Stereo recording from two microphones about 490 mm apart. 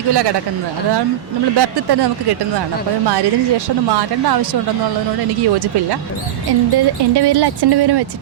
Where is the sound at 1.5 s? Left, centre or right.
Right.